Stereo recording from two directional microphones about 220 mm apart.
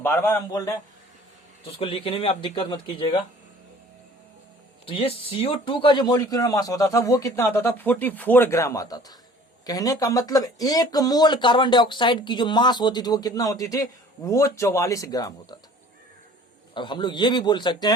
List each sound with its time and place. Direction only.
0.0 s speech: 10° left (ahead or behind)
1.8 s speech: 25° left (ahead or behind)
4.9 s speech: 25° left (ahead or behind)
16.7 s speech: 20° left (ahead or behind)